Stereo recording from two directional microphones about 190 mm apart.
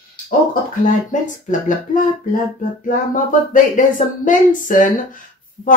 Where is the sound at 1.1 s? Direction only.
40° left (ahead or behind).